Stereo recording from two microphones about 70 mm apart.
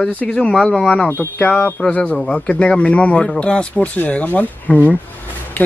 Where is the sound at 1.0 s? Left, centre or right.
Left.